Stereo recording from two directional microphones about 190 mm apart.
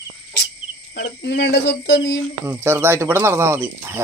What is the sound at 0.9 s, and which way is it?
Speech, 60° left (ahead or behind).